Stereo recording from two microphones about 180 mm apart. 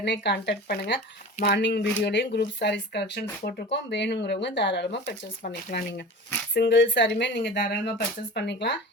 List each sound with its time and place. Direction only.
0.0 s speech: 75° left (ahead or behind)
7.6 s speech: 65° left (ahead or behind)